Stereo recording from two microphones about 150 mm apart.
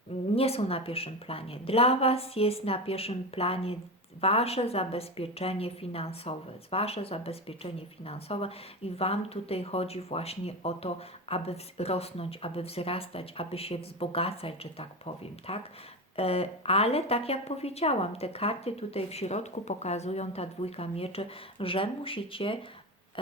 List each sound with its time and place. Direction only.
0.3 s a woman's voice: 40° left (ahead or behind)